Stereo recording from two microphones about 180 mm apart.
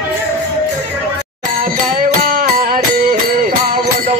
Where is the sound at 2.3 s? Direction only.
50° right (ahead or behind).